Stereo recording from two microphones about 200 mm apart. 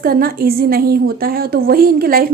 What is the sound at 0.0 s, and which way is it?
A woman's voice, 50° right (ahead or behind).